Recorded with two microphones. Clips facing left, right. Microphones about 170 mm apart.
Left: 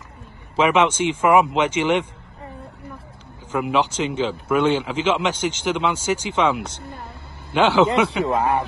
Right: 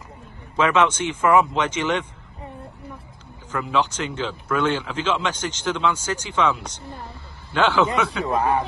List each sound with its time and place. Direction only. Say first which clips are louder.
0.6 s a man's voice: left 2 dB; 10° left (ahead or behind)
3.5 s a man's voice: left 3 dB; 15° left (ahead or behind)
7.9 s speech: left 4 dB; 25° left (ahead or behind)